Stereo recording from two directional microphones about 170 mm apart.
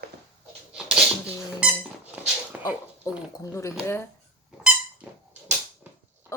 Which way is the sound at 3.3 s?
20° left (ahead or behind).